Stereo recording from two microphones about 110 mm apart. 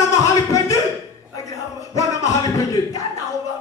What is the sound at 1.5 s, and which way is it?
Music, 30° left (ahead or behind).